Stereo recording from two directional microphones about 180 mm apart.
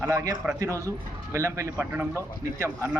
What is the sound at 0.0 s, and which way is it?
Speech, 15° right (ahead or behind).